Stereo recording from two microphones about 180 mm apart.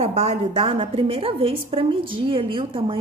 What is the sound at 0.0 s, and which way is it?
A woman's voice, 35° right (ahead or behind).